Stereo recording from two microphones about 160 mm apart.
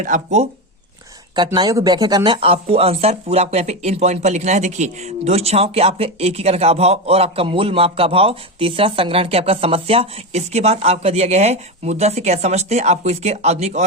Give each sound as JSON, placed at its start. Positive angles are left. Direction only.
{"t": 0.0, "sound": "speech", "side_deg": -50}
{"t": 1.5, "sound": "speech", "side_deg": -25}